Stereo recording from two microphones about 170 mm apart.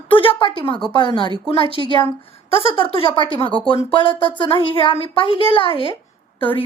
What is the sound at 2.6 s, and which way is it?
A woman's voice, 30° left (ahead or behind).